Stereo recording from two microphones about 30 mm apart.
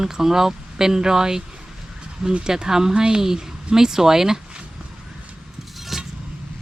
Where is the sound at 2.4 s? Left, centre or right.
Centre.